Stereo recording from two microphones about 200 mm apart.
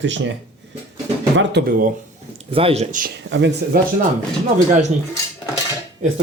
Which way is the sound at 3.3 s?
65° right (ahead or behind).